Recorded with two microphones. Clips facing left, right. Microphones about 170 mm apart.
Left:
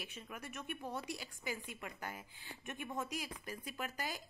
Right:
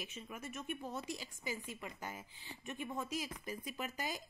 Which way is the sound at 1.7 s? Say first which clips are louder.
Right 1 dB; 5° left (ahead or behind).